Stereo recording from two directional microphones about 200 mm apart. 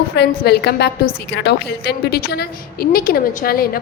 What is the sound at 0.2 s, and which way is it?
A woman's voice, 55° left (ahead or behind).